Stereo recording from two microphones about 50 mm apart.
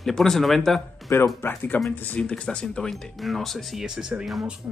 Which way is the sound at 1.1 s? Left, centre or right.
Left.